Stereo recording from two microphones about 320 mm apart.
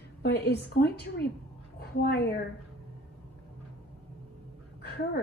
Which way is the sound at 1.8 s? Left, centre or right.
Left.